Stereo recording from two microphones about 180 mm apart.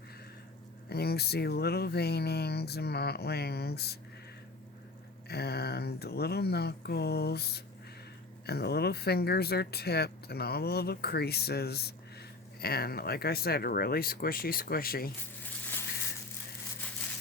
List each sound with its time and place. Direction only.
0.9 s speech: 60° left (ahead or behind)
5.3 s speech: 65° left (ahead or behind)